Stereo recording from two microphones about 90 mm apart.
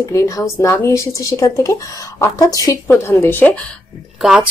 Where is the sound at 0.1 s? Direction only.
35° left (ahead or behind).